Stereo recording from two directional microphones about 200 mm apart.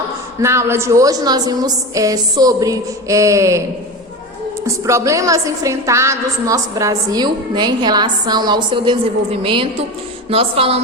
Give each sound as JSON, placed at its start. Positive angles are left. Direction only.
{"t": 0.3, "sound": "a woman's voice", "side_deg": -15}
{"t": 4.6, "sound": "a woman's voice", "side_deg": -15}